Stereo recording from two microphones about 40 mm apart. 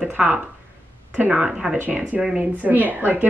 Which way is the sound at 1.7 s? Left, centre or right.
Right.